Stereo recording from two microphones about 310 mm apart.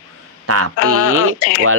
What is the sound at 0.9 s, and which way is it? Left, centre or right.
Speech, right.